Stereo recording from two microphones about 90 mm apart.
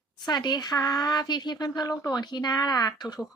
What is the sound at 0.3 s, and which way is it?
A woman's voice, 50° left (ahead or behind).